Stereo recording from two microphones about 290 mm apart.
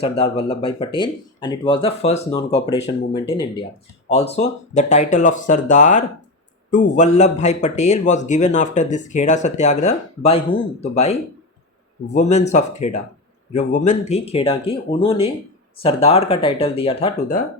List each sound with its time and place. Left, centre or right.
0.0 s a man's voice: centre
12.0 s speech: left
12.5 s a man's voice: left